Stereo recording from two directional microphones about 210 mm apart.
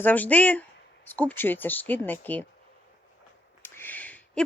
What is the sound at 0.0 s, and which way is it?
Speech, 10° left (ahead or behind).